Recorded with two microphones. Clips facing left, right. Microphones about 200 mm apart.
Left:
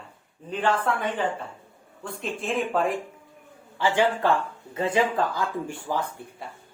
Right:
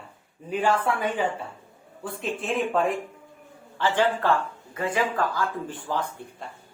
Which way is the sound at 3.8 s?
15° left (ahead or behind).